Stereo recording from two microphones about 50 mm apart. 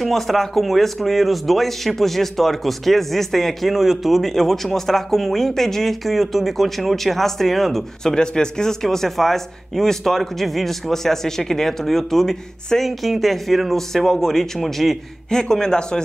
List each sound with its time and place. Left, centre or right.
0.0 s a man's voice: centre
8.1 s a man's voice: centre
15.2 s a man's voice: centre